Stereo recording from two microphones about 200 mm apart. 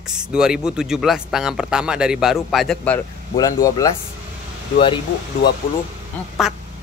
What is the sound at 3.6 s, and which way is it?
Speech, 15° left (ahead or behind).